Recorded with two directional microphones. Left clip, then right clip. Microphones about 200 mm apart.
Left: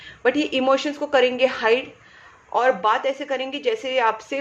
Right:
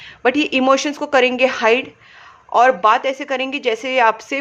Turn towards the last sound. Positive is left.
turn(degrees=-35)  # may be behind; listen again after turning